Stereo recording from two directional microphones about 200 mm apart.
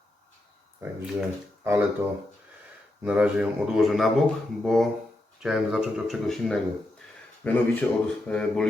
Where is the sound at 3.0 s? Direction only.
5° right (ahead or behind).